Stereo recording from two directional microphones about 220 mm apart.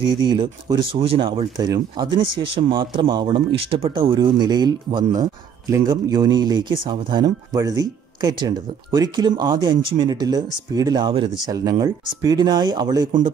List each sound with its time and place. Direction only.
0.0 s speech: 20° right (ahead or behind)